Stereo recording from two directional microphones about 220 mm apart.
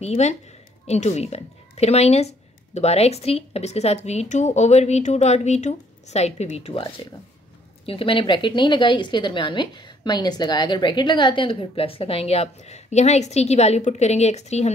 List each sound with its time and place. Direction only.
0.0 s speech: 30° left (ahead or behind)